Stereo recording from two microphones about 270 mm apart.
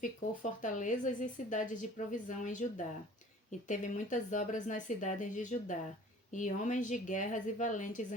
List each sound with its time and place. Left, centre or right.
0.6 s a woman's voice: left